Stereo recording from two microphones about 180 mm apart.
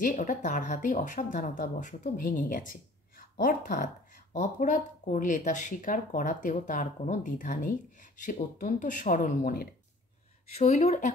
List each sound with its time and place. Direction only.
0.0 s speech: 45° left (ahead or behind)
10.5 s speech: 35° left (ahead or behind)